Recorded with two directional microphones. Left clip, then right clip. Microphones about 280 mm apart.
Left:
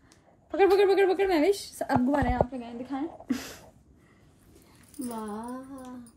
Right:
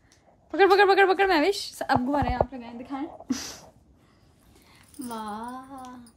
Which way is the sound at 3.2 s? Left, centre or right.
Centre.